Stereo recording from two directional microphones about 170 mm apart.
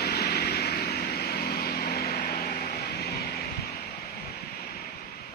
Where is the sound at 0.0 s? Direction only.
70° left (ahead or behind).